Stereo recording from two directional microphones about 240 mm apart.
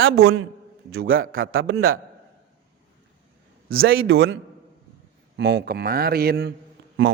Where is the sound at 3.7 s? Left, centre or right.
Right.